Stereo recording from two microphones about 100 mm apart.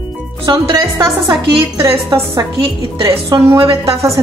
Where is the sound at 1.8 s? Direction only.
30° right (ahead or behind).